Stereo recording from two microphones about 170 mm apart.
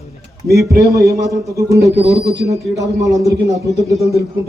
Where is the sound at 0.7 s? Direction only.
70° right (ahead or behind).